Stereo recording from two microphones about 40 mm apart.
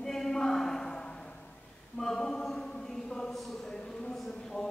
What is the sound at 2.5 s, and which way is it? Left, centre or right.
Choir, centre.